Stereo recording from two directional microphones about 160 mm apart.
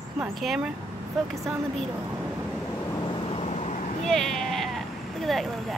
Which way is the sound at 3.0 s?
30° left (ahead or behind).